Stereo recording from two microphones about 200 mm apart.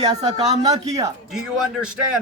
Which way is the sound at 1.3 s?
5° right (ahead or behind).